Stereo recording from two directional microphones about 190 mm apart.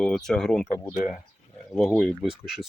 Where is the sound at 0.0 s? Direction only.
Centre (ahead or behind).